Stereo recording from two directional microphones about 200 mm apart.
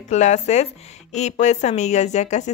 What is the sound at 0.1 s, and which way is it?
A woman's voice, 35° left (ahead or behind).